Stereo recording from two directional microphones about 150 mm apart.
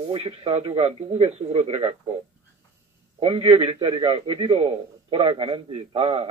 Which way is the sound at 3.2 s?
40° right (ahead or behind).